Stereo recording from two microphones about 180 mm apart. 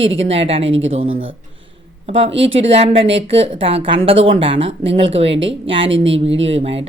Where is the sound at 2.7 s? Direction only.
35° right (ahead or behind).